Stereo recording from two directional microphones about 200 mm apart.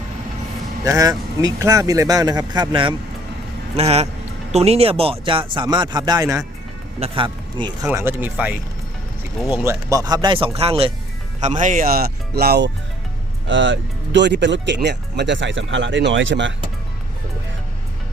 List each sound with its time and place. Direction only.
0.9 s speech: 15° right (ahead or behind)
7.9 s speech: 10° right (ahead or behind)
9.6 s speech: 15° right (ahead or behind); by 12.7 s 55° right (ahead or behind)
13.5 s speech: 70° right (ahead or behind)